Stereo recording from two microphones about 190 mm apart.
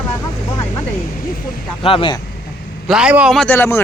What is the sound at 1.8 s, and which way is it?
Speech, 30° left (ahead or behind).